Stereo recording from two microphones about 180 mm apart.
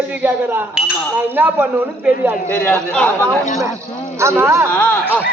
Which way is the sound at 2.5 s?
10° left (ahead or behind).